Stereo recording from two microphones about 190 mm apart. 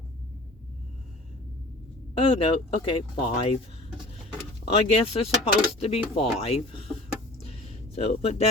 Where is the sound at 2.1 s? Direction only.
30° left (ahead or behind).